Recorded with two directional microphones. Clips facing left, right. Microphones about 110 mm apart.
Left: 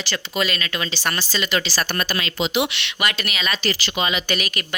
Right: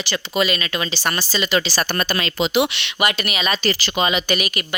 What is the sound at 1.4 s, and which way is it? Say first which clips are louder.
Speech: right 3 dB; 25° right (ahead or behind).